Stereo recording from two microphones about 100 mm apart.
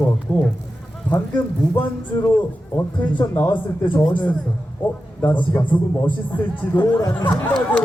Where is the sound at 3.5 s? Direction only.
55° left (ahead or behind).